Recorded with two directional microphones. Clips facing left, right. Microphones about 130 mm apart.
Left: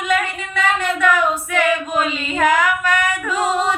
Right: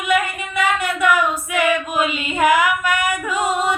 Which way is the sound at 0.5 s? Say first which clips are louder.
Even; 10° right (ahead or behind).